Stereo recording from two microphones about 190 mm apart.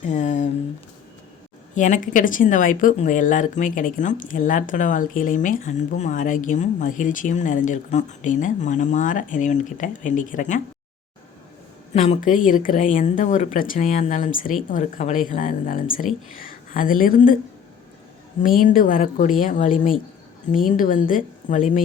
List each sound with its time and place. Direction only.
0.0 s a sound: 40° left (ahead or behind)
1.7 s speech: 40° left (ahead or behind)
11.9 s speech: 35° left (ahead or behind)
18.4 s speech: 45° left (ahead or behind)